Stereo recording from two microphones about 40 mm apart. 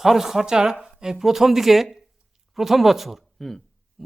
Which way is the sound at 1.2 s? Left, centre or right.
Centre.